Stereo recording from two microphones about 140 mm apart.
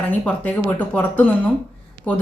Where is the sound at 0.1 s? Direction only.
10° left (ahead or behind).